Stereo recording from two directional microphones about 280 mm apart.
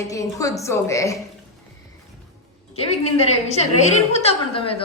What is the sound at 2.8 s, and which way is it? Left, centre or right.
A woman's voice, left.